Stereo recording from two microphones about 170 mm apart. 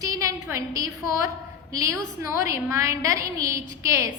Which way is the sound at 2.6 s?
15° right (ahead or behind).